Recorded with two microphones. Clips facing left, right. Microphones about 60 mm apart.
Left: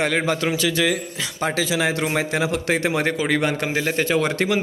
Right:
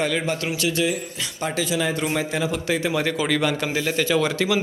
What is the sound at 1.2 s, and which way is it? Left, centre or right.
A man's voice, left.